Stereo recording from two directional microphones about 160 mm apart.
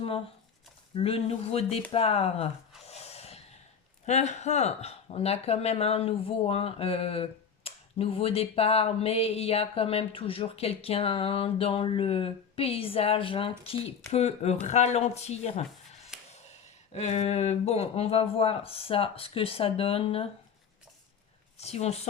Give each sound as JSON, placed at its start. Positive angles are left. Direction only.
{"t": 0.9, "sound": "speech", "side_deg": 35}
{"t": 2.8, "sound": "snort", "side_deg": 40}
{"t": 4.0, "sound": "speech", "side_deg": 45}
{"t": 21.6, "sound": "speech", "side_deg": 40}